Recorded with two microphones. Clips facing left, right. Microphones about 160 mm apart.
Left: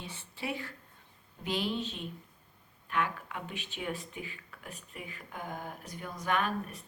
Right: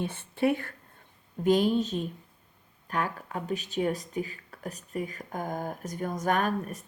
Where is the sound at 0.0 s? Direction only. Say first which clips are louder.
Right 13 dB; 55° right (ahead or behind).